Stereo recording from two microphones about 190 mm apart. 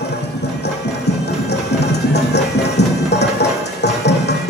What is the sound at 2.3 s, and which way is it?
Music, 65° left (ahead or behind).